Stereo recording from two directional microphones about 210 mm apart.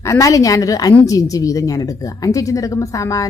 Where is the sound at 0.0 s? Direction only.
15° left (ahead or behind).